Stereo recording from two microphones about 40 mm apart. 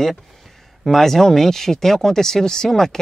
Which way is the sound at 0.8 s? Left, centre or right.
Centre.